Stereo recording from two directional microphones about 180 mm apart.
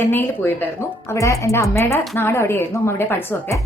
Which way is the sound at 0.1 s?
10° left (ahead or behind).